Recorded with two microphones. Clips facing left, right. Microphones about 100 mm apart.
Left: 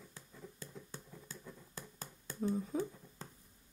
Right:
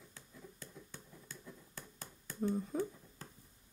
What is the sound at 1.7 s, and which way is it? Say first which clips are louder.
Hands: left 2 dB; 30° left (ahead or behind).